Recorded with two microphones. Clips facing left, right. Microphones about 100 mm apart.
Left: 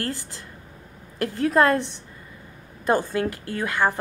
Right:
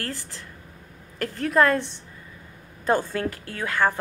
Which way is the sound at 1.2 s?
20° left (ahead or behind).